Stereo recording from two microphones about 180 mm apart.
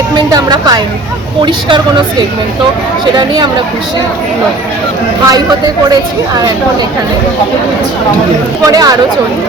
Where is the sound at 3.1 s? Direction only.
25° right (ahead or behind).